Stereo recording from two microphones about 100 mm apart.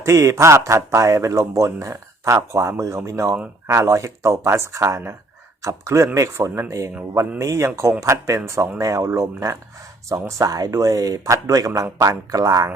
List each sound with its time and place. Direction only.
0.0 s speech: 30° right (ahead or behind)